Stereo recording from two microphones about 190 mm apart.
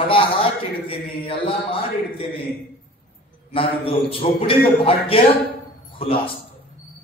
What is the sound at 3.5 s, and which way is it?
A man's voice, 30° left (ahead or behind).